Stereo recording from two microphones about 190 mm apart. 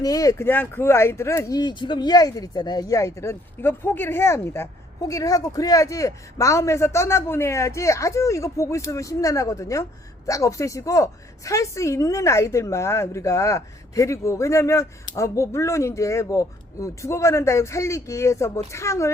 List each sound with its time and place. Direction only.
0.0 s speech: 20° left (ahead or behind)